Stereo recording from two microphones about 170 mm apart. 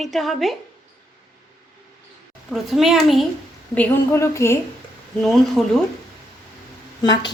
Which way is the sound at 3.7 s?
10° left (ahead or behind).